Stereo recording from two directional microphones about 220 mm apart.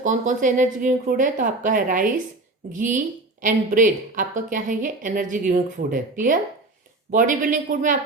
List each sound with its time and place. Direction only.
0.0 s a woman's voice: 35° right (ahead or behind)